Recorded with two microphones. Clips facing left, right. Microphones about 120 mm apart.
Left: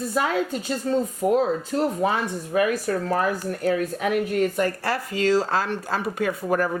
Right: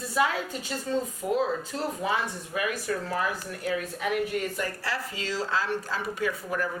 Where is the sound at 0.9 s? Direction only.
55° left (ahead or behind).